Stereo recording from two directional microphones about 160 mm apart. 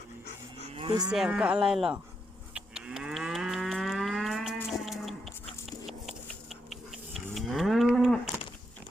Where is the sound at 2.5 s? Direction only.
5° right (ahead or behind).